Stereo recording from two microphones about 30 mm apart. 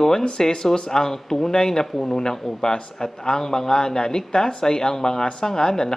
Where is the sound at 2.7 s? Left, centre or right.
Left.